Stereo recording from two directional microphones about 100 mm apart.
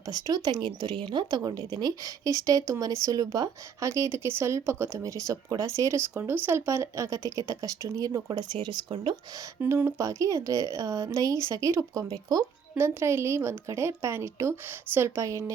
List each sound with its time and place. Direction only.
0.0 s speech: 40° right (ahead or behind)
9.6 s a woman's voice: 20° right (ahead or behind)
9.8 s speech: 35° right (ahead or behind)
12.7 s a woman's voice: 25° right (ahead or behind)